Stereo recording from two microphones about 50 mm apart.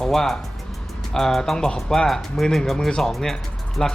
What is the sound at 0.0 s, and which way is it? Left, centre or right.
Speech, centre.